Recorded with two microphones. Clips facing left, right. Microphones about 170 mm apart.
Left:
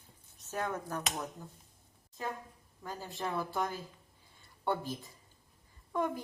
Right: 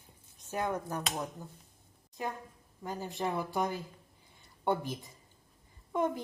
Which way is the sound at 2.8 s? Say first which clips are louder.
Right 4 dB; 20° right (ahead or behind).